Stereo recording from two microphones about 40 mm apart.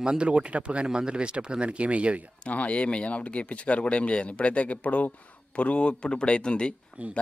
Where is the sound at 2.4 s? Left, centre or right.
Left.